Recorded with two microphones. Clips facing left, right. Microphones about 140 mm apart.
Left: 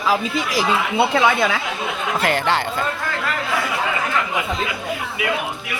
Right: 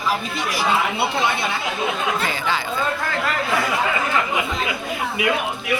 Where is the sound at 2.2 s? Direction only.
70° left (ahead or behind).